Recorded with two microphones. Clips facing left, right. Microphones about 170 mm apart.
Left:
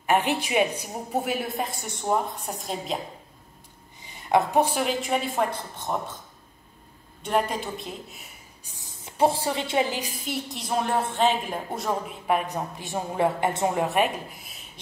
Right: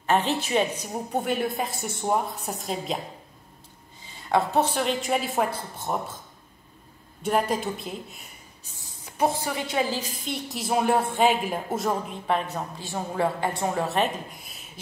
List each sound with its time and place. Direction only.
0.0 s a woman's voice: 15° left (ahead or behind)
4.0 s a woman's voice: 20° left (ahead or behind); by 5.9 s 5° right (ahead or behind)
7.2 s a woman's voice: centre (ahead or behind)
8.6 s a sound: 15° left (ahead or behind)
9.1 s a woman's voice: 30° left (ahead or behind)
10.2 s a woman's voice: centre (ahead or behind)
12.3 s a woman's voice: 10° left (ahead or behind)
14.4 s beatboxing: centre (ahead or behind)